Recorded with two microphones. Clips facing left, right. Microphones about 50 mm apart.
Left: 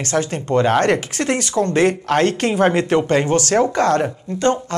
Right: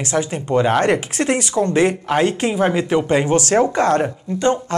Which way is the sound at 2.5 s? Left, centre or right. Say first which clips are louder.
Left 2 dB; centre.